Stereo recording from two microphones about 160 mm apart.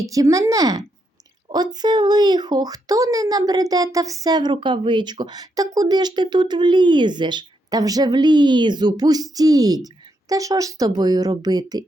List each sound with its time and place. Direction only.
0.0 s a woman's voice: 20° right (ahead or behind)